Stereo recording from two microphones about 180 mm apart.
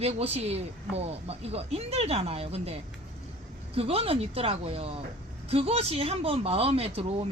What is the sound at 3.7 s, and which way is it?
Speech, 35° right (ahead or behind).